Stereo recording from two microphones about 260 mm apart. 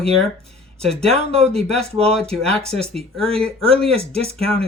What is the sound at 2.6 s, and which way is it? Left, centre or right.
Speech, right.